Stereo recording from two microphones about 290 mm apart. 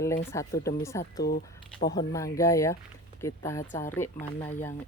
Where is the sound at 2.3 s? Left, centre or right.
Centre.